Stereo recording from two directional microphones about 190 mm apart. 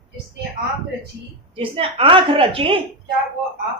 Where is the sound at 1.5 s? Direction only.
30° right (ahead or behind).